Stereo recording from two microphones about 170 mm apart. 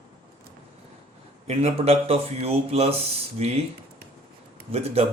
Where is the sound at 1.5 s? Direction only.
40° right (ahead or behind).